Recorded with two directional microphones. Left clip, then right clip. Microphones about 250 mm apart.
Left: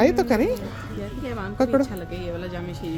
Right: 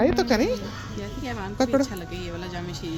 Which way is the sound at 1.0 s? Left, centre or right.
Right.